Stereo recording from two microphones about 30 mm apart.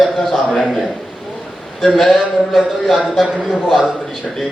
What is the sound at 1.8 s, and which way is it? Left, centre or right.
Speech, centre.